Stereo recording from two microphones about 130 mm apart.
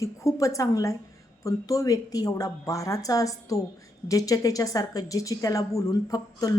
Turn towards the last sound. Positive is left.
turn(degrees=25)  # may be behind; listen again after turning